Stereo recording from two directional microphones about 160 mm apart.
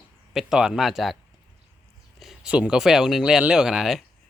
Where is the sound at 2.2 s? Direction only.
5° right (ahead or behind).